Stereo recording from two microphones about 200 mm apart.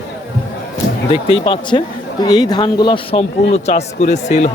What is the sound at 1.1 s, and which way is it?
A man's voice, 25° left (ahead or behind).